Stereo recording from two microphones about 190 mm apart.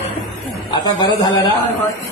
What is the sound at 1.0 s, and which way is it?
Speech, 20° left (ahead or behind).